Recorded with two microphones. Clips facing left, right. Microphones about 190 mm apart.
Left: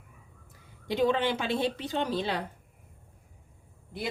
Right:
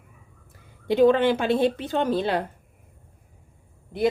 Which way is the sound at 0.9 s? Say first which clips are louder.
Right 8 dB; 55° right (ahead or behind).